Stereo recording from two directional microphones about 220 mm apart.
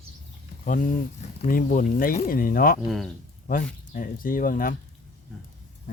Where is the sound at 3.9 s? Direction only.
40° left (ahead or behind).